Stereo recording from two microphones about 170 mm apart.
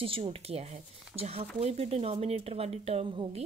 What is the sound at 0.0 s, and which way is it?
Speech, 35° right (ahead or behind).